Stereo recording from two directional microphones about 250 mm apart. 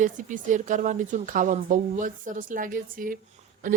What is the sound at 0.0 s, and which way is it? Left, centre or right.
Cutlery, right.